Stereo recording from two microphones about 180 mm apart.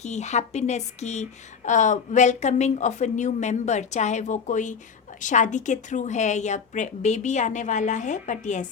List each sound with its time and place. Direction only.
0.0 s a woman's voice: 40° left (ahead or behind)